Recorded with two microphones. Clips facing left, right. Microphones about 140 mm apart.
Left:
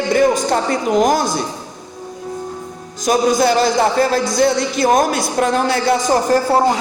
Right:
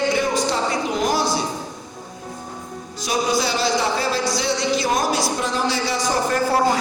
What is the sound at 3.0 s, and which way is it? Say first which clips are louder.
A man's voice: left 7 dB; 50° left (ahead or behind).